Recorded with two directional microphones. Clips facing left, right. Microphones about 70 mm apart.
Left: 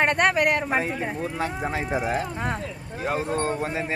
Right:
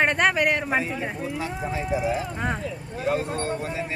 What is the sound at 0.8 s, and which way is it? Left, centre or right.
Speech, left.